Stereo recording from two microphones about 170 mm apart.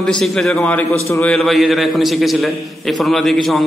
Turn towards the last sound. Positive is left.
turn(degrees=0)  # may be behind; listen again after turning